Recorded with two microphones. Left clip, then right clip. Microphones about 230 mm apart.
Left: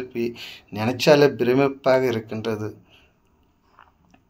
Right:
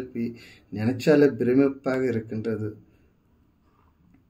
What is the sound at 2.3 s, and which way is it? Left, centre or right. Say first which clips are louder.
Speech: left 3 dB; left.